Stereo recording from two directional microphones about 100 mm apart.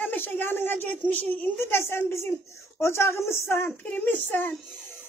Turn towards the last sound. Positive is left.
turn(degrees=20)  # may be behind; listen again after turning